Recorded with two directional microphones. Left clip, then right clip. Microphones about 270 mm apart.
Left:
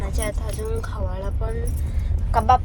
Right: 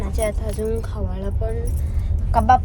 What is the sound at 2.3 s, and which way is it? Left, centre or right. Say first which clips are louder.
Speech: right 2 dB; centre.